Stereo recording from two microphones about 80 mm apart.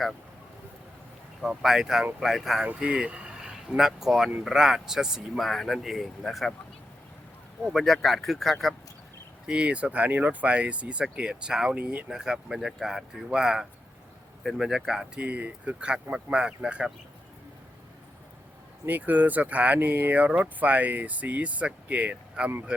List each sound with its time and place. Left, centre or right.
1.4 s speech: centre
2.6 s speech: centre
7.6 s speech: centre
9.5 s speech: centre
18.9 s speech: right